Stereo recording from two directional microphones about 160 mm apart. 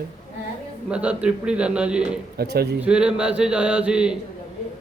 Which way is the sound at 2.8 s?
5° right (ahead or behind).